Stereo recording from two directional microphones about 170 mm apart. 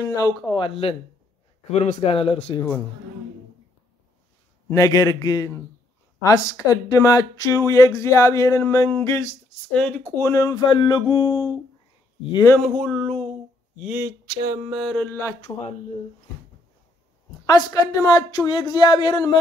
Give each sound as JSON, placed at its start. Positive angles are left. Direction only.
{"t": 0.1, "sound": "a woman's voice", "side_deg": 20}
{"t": 4.6, "sound": "a woman's voice", "side_deg": 20}
{"t": 10.1, "sound": "a woman's voice", "side_deg": 15}
{"t": 14.0, "sound": "a sound", "side_deg": -20}
{"t": 14.7, "sound": "mantra", "side_deg": 0}
{"t": 15.5, "sound": "a woman's voice", "side_deg": 20}
{"t": 17.5, "sound": "a woman's voice", "side_deg": 25}